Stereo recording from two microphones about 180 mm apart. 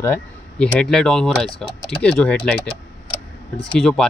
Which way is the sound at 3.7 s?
5° left (ahead or behind).